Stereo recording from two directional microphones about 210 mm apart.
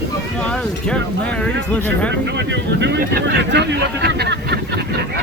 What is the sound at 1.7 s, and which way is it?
Speech, 5° left (ahead or behind).